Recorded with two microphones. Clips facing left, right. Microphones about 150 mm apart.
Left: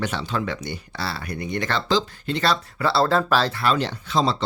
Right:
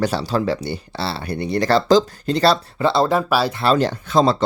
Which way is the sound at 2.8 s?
20° right (ahead or behind).